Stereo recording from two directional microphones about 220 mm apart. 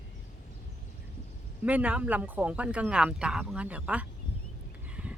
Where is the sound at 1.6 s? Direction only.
5° right (ahead or behind).